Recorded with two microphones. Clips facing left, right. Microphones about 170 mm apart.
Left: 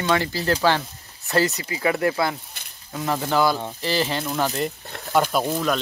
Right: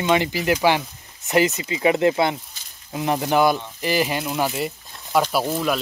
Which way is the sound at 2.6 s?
60° left (ahead or behind).